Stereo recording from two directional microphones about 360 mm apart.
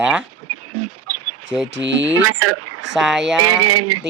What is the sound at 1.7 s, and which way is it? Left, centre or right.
Speech, right.